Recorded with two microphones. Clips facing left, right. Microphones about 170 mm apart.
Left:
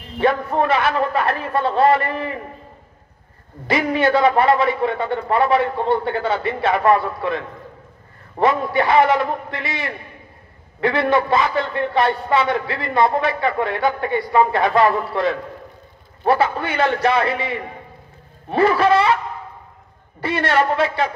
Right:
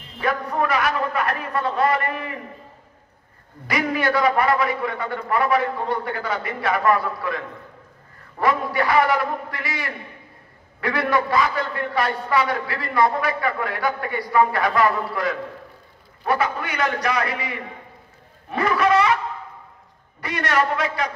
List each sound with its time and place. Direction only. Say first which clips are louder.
0.2 s a man's voice: left 5 dB; 25° left (ahead or behind)
3.6 s a man's voice: left 4 dB; 25° left (ahead or behind)
18.5 s a sound: left 4 dB; 30° left (ahead or behind)
20.2 s a man's voice: left 4 dB; 30° left (ahead or behind)